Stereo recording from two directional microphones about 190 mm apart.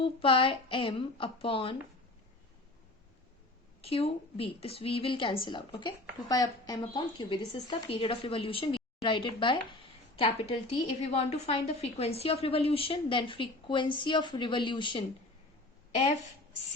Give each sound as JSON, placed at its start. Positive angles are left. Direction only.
{"t": 0.0, "sound": "a woman's voice", "side_deg": 30}
{"t": 3.8, "sound": "a woman's voice", "side_deg": 30}